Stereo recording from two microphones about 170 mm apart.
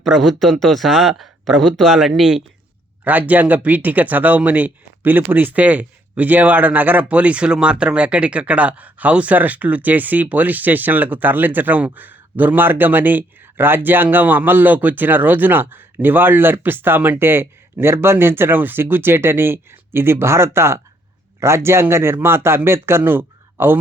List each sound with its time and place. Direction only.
0.0 s speech: centre (ahead or behind)